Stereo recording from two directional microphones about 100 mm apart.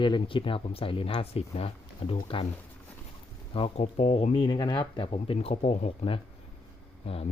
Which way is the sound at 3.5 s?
75° left (ahead or behind).